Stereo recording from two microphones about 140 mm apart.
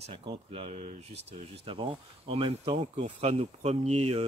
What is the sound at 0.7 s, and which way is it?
Speech, 55° right (ahead or behind).